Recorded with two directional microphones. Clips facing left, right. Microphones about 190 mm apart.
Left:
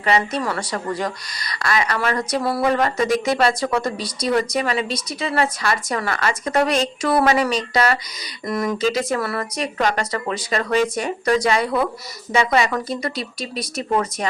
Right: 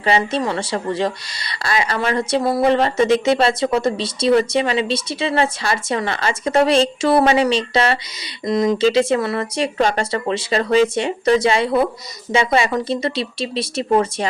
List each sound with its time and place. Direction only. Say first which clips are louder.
0.0 s speech: right 2 dB; 30° right (ahead or behind)